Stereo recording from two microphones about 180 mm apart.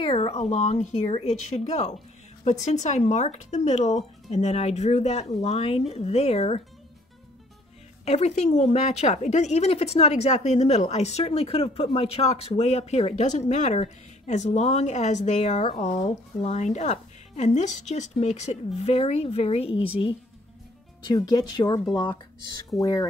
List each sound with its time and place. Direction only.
0.0 s a woman's voice: 35° left (ahead or behind)
8.0 s a woman's voice: 40° left (ahead or behind)
21.1 s speech: 20° left (ahead or behind)